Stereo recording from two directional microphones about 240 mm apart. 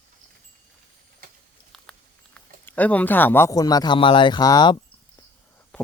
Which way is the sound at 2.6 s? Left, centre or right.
Centre.